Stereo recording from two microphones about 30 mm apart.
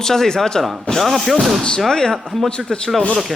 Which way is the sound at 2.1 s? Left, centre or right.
Centre.